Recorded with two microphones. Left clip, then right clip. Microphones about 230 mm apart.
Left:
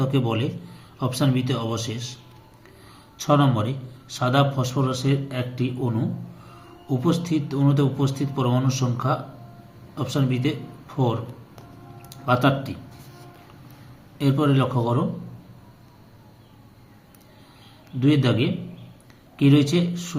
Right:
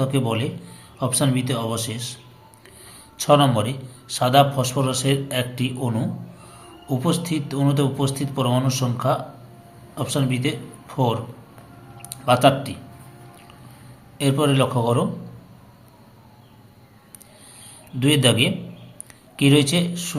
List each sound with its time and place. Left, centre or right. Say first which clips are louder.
0.0 s a man's voice: right 1 dB; centre
3.2 s a man's voice: right 4 dB; centre
14.2 s a man's voice: right 2 dB; centre
18.0 s a man's voice: right 4 dB; centre